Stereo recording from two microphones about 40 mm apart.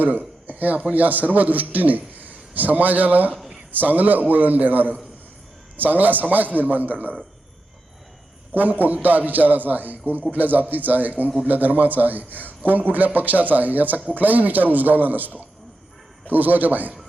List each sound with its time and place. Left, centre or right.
0.0 s a man's voice: right
8.5 s speech: right